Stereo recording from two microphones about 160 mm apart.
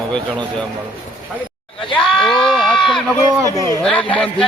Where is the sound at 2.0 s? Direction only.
Centre (ahead or behind).